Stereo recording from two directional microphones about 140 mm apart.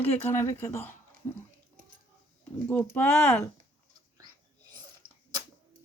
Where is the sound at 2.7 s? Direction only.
10° left (ahead or behind).